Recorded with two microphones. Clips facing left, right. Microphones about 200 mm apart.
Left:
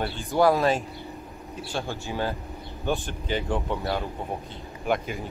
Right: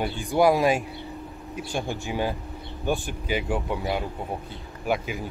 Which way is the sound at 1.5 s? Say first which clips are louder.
Right 2 dB; 15° right (ahead or behind).